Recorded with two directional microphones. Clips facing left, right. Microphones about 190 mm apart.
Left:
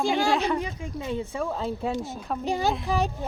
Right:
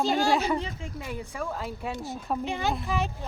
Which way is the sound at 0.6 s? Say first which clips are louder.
Left 4 dB; 20° left (ahead or behind).